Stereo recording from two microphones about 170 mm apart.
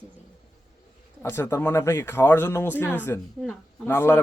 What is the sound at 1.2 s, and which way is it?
Speech, 15° left (ahead or behind).